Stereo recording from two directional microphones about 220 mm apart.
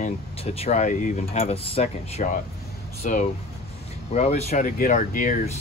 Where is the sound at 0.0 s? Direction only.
30° left (ahead or behind).